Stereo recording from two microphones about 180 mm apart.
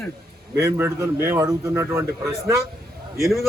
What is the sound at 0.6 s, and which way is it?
A man's voice, 15° right (ahead or behind).